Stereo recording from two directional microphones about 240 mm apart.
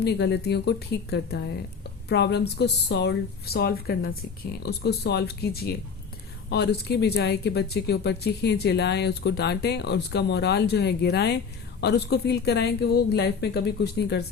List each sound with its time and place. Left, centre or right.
0.0 s speech: left